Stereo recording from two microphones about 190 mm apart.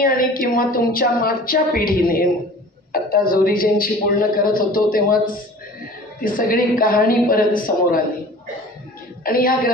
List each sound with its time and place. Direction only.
0.0 s a man's voice: 50° left (ahead or behind)
9.2 s a man's voice: 50° left (ahead or behind)